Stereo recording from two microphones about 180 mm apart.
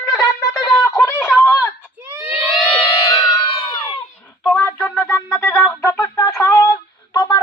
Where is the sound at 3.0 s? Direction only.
20° left (ahead or behind).